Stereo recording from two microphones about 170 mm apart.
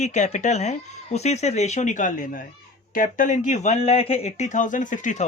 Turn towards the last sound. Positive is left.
turn(degrees=50)  # may be behind; listen again after turning